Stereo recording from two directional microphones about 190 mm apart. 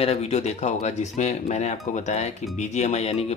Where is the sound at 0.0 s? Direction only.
35° left (ahead or behind).